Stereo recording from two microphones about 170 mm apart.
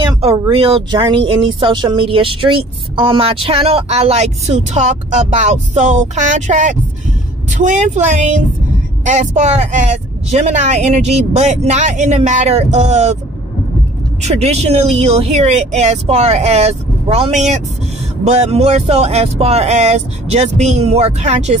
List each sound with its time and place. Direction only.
0.1 s a woman's voice: 35° right (ahead or behind)
14.2 s speech: 40° right (ahead or behind)